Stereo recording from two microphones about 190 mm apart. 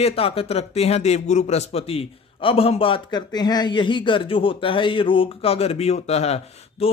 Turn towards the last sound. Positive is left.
turn(degrees=35)  # may be behind; listen again after turning